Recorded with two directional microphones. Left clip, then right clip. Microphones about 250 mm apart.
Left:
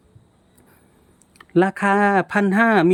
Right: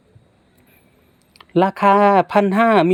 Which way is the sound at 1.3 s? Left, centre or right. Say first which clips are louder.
Right 2 dB; centre.